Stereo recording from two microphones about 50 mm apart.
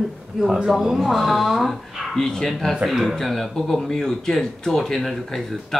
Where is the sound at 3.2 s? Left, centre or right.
Centre.